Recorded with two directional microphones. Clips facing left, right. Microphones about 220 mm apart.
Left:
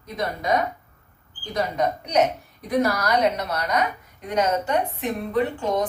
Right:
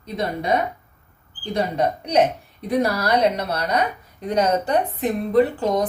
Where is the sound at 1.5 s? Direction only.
30° right (ahead or behind).